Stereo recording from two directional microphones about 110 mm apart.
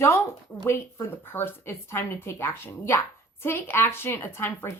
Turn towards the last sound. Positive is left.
turn(degrees=20)  # may be behind; listen again after turning